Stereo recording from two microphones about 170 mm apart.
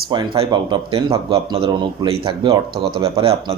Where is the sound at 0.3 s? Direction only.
30° right (ahead or behind).